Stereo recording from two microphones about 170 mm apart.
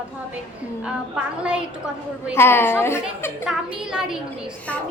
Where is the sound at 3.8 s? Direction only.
5° right (ahead or behind).